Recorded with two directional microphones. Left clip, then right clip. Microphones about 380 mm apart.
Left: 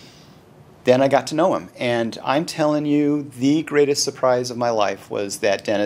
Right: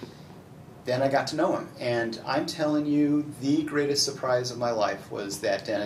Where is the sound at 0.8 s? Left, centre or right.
Left.